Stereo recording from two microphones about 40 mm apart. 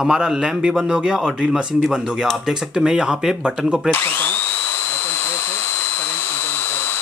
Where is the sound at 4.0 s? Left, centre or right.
Left.